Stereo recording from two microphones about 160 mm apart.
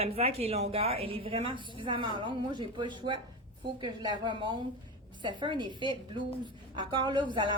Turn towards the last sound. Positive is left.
turn(degrees=-30)  # may be behind; listen again after turning